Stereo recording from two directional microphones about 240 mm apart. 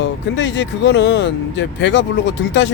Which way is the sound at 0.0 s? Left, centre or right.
Left.